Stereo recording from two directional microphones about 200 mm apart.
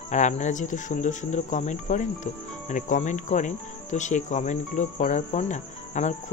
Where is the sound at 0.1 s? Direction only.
35° left (ahead or behind).